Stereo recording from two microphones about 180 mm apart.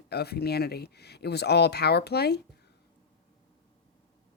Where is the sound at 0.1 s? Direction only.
65° left (ahead or behind).